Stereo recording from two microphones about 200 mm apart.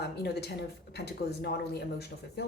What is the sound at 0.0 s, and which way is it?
Speech, 55° left (ahead or behind).